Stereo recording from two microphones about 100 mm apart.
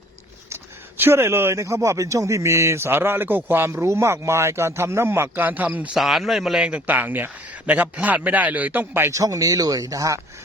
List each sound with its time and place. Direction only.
0.5 s speech: 25° right (ahead or behind)
6.0 s speech: centre (ahead or behind); by 9.1 s 20° right (ahead or behind)
9.1 s speech: 35° right (ahead or behind)